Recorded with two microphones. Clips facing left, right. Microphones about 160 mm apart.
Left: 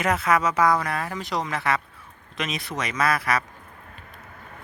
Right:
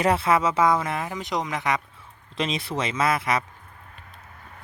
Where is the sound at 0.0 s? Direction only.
30° right (ahead or behind).